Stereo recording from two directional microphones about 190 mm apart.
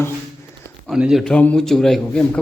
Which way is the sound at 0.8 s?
Centre (ahead or behind).